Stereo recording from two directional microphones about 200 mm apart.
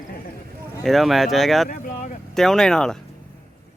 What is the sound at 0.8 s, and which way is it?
Speech, centre (ahead or behind).